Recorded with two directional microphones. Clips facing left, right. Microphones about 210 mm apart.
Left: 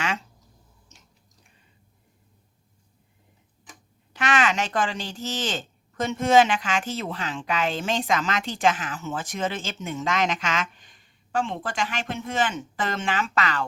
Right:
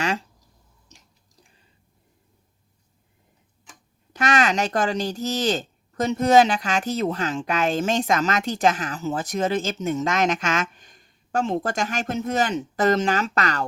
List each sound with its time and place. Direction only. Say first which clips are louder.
4.1 s speech: right 2 dB; 40° right (ahead or behind)